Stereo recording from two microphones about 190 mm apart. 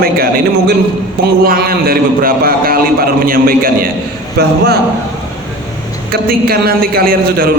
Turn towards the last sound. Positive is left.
turn(degrees=-50)  # may be behind; listen again after turning